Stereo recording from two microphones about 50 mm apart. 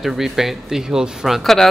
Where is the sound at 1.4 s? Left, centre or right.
Centre.